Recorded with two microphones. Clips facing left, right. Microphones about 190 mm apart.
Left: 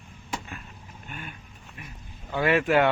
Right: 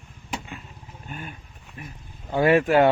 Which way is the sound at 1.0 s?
35° right (ahead or behind).